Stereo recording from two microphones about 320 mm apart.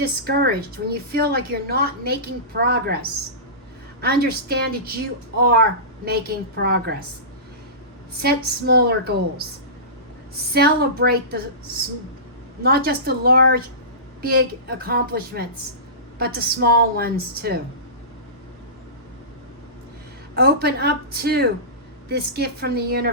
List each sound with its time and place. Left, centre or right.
0.0 s a woman's voice: right
8.2 s a woman's voice: right
10.5 s a woman's voice: right
12.6 s a woman's voice: right
20.3 s a woman's voice: right